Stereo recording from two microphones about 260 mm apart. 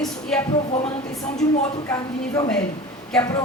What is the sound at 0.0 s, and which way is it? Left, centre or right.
Speech, centre.